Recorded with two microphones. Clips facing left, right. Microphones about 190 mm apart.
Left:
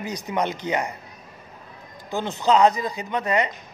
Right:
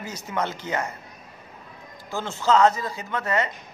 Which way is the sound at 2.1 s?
15° left (ahead or behind).